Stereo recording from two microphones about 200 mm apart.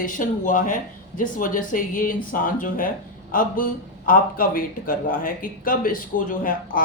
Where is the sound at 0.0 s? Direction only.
40° left (ahead or behind).